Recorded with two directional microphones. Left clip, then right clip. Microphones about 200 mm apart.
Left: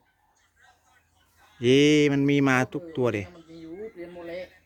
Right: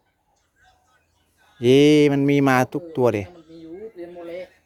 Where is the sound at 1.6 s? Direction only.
15° right (ahead or behind).